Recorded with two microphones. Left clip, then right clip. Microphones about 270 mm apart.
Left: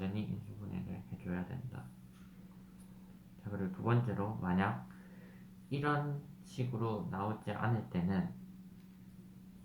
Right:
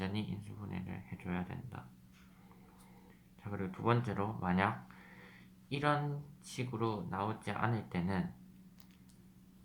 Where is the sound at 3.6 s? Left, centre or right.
Right.